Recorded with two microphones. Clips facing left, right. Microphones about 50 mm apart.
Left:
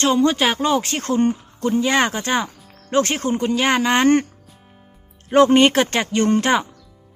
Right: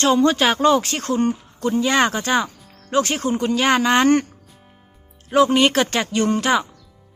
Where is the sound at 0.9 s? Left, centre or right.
Left.